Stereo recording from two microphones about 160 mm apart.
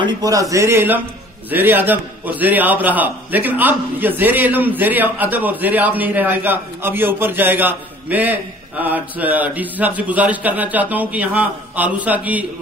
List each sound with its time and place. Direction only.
0.0 s a man's voice: 20° right (ahead or behind)